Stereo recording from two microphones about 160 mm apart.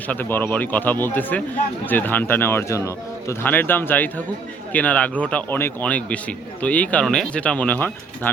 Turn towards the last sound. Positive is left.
turn(degrees=10)  # may be behind; listen again after turning